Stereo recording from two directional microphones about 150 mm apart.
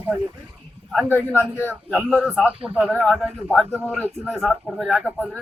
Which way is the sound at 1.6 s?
10° right (ahead or behind).